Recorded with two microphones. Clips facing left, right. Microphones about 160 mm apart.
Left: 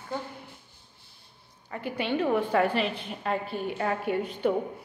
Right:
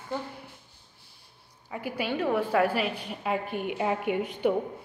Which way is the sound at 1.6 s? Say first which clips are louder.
Left 1 dB; 5° right (ahead or behind).